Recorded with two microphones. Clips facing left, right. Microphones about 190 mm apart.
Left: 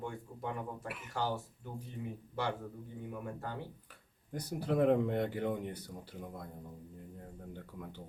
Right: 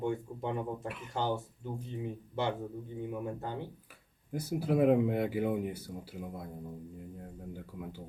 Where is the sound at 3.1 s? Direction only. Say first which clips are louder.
Right 3 dB; 20° right (ahead or behind).